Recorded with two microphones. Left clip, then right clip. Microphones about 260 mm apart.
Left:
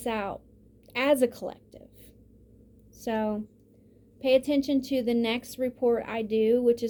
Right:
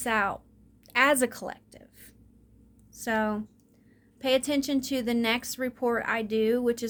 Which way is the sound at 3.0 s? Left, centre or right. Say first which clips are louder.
Right 1 dB; right.